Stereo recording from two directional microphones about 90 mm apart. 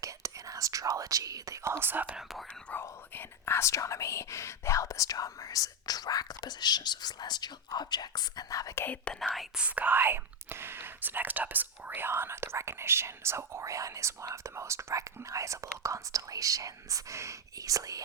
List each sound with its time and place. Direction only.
0.0 s speech: 40° right (ahead or behind)
1.8 s speech: 20° right (ahead or behind)
2.7 s speech: 15° left (ahead or behind)
3.2 s speech: 25° left (ahead or behind)
8.8 s speech: 15° left (ahead or behind)
9.6 s speech: 15° right (ahead or behind); by 18.0 s 40° right (ahead or behind)